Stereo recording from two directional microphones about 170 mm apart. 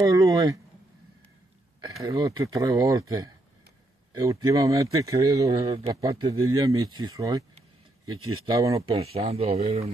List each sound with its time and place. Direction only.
0.0 s speech: 20° right (ahead or behind)
2.0 s speech: 20° right (ahead or behind)
5.7 s speech: 35° right (ahead or behind)
5.9 s speech: 25° right (ahead or behind)
8.5 s speech: 20° right (ahead or behind)
8.9 s speech: 35° right (ahead or behind)